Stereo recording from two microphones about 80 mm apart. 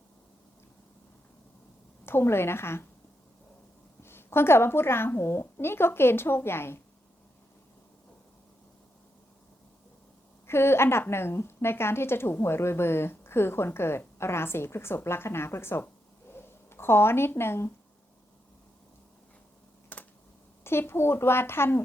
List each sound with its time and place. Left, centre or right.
2.0 s a woman's voice: left
4.0 s a woman's voice: left
10.4 s a woman's voice: left
16.3 s a sound: left
19.9 s computer keyboard: centre
20.7 s a woman's voice: left